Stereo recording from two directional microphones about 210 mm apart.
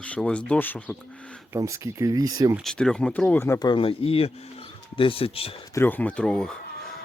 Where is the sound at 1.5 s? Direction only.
15° right (ahead or behind).